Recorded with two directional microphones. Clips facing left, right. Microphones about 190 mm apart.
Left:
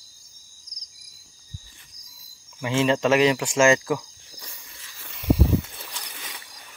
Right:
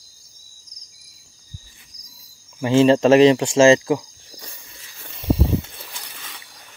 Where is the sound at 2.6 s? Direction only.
35° right (ahead or behind).